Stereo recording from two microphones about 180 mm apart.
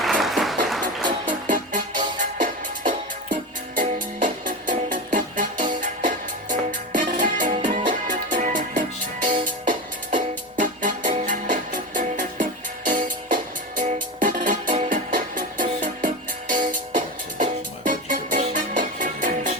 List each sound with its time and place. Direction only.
0.0 s music: centre (ahead or behind)
1.5 s music: 45° right (ahead or behind)